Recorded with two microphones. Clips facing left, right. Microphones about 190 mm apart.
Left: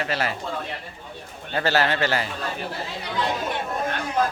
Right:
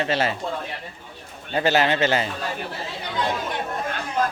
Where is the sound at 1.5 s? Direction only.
20° right (ahead or behind).